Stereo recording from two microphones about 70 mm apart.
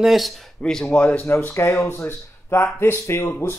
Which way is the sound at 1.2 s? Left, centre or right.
Left.